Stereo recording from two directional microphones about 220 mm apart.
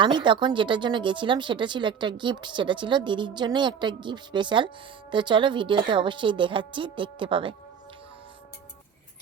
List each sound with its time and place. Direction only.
0.0 s a woman's voice: 20° right (ahead or behind)